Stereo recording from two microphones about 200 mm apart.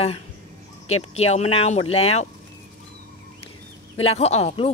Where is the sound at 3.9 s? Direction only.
30° left (ahead or behind).